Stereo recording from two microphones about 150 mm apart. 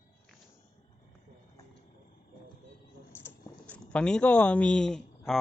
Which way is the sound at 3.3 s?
15° left (ahead or behind).